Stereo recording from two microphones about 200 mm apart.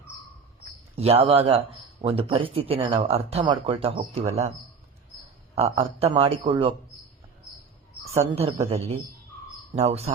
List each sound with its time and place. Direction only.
0.9 s speech: 30° right (ahead or behind)
5.5 s speech: 30° right (ahead or behind)
8.1 s speech: 35° right (ahead or behind)